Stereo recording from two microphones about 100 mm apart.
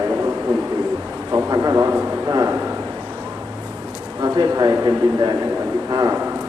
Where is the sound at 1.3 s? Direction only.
35° right (ahead or behind).